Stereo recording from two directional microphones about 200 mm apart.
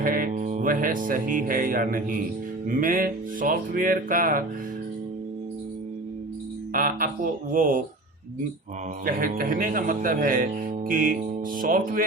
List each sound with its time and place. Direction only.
0.0 s speech: 45° right (ahead or behind)
6.7 s music: 45° right (ahead or behind)
7.5 s speech: 45° right (ahead or behind)
9.0 s speech: 45° right (ahead or behind)